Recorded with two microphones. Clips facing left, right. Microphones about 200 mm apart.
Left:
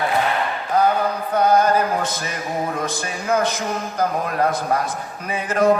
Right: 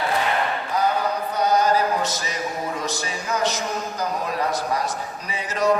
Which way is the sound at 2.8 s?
55° left (ahead or behind).